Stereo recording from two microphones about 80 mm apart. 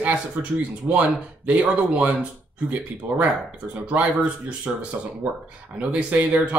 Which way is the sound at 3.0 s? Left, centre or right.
Right.